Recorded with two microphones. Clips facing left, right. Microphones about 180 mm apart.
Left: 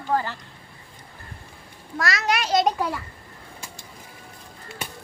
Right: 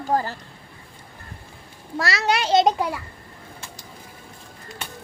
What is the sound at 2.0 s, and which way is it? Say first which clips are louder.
Speech: right 2 dB; 30° right (ahead or behind).